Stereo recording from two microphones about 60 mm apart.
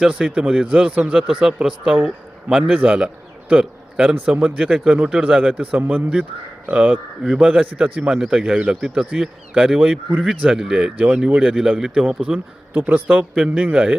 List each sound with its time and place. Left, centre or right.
0.0 s speech: centre
4.1 s speech: right
8.1 s speech: centre